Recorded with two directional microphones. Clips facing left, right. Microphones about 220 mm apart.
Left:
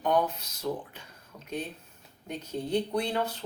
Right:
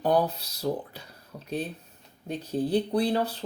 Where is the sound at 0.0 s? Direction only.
35° right (ahead or behind).